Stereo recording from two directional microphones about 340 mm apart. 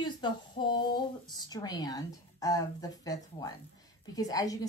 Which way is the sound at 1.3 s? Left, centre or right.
Centre.